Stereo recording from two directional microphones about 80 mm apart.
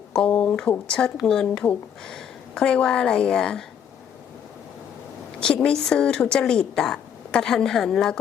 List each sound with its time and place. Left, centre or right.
0.1 s a woman's voice: centre
5.4 s a woman's voice: centre